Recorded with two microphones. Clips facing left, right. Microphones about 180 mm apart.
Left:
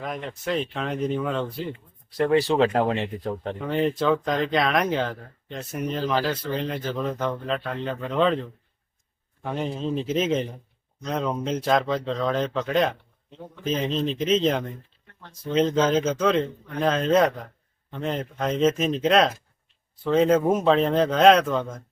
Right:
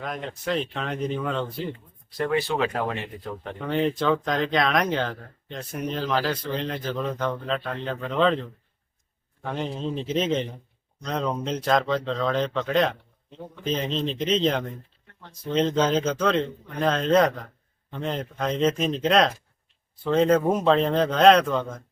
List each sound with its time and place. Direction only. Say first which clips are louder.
0.0 s speech: even; centre (ahead or behind)
2.1 s speech: left 5 dB; 35° left (ahead or behind)
3.6 s a man's voice: even; centre (ahead or behind)